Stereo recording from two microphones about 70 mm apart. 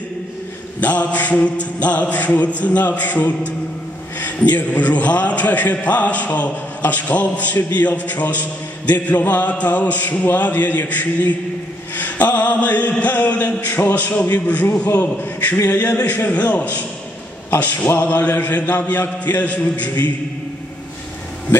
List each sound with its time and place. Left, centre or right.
0.7 s a man's voice: left